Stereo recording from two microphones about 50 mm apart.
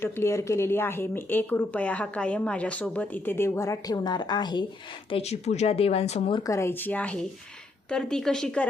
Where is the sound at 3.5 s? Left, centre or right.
Left.